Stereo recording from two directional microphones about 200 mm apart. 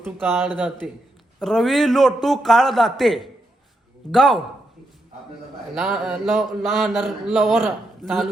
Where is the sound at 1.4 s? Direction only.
Centre (ahead or behind).